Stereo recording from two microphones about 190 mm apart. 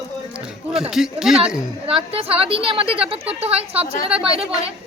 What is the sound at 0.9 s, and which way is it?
Speech, 5° right (ahead or behind).